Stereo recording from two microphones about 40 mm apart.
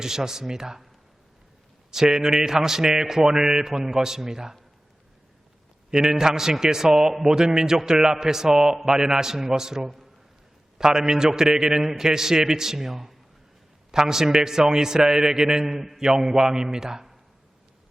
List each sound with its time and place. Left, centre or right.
0.0 s a man's voice: centre
1.9 s a man's voice: centre
5.9 s a man's voice: centre